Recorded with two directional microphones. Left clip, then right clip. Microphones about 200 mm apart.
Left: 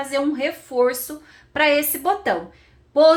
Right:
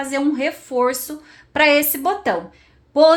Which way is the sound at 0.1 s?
35° right (ahead or behind).